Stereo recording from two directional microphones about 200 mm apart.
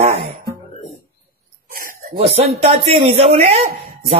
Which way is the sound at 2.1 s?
30° right (ahead or behind).